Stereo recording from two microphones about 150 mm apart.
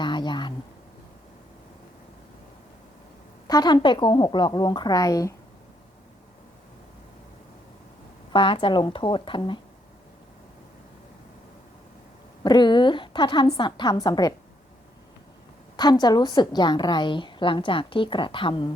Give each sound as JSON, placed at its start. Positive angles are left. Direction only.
{"t": 0.0, "sound": "a sound", "side_deg": 30}
{"t": 3.4, "sound": "a woman's voice", "side_deg": 25}
{"t": 8.3, "sound": "a woman's voice", "side_deg": 35}
{"t": 12.4, "sound": "a woman's voice", "side_deg": 30}
{"t": 15.7, "sound": "a woman's voice", "side_deg": 30}